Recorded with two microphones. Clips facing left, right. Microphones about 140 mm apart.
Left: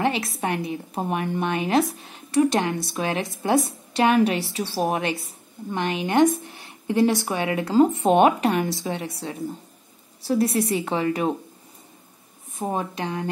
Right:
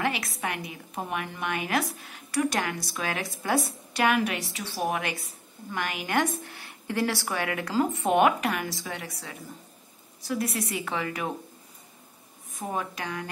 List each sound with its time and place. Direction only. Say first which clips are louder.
0.0 s a woman's voice: left 6 dB; 30° left (ahead or behind)
12.5 s a woman's voice: left 5 dB; 30° left (ahead or behind)